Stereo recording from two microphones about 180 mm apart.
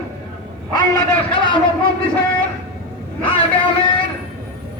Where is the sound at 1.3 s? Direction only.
25° left (ahead or behind).